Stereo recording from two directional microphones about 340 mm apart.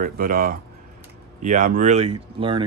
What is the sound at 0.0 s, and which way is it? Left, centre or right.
Speech, right.